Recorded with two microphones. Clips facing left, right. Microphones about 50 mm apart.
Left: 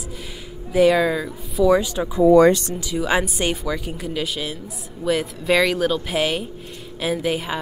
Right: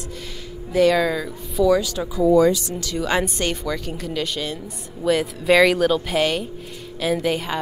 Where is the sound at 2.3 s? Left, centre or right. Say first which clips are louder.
Left 3 dB; left.